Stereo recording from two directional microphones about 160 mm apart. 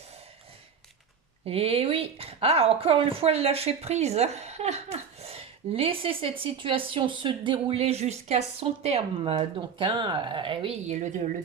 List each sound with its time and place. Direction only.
1.5 s a woman's voice: 40° right (ahead or behind)